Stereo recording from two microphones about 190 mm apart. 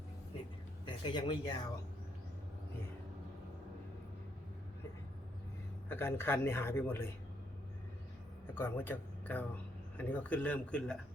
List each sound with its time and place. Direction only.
0.9 s speech: 25° left (ahead or behind)
5.9 s speech: 10° left (ahead or behind)
8.5 s speech: 10° left (ahead or behind)